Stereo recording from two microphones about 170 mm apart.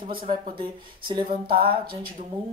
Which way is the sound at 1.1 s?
30° right (ahead or behind).